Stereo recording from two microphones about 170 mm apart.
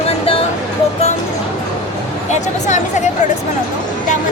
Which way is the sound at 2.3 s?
45° left (ahead or behind).